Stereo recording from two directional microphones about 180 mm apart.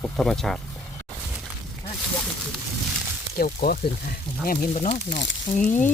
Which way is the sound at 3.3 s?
55° left (ahead or behind).